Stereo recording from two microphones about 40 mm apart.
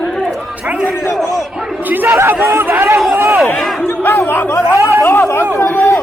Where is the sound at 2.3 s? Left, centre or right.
Right.